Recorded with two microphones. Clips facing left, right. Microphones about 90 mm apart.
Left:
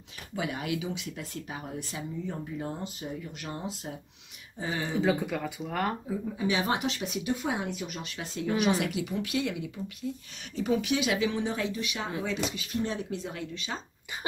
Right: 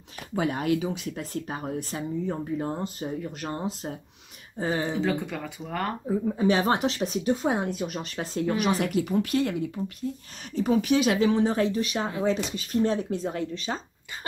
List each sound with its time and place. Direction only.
0.4 s speech: 45° right (ahead or behind)
5.0 s speech: 10° left (ahead or behind)
6.0 s speech: 45° right (ahead or behind)